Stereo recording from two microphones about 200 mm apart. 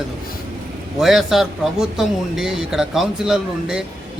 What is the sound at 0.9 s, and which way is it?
Speech, centre (ahead or behind).